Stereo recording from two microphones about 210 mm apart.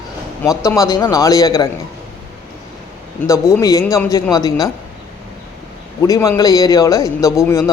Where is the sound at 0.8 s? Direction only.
20° left (ahead or behind).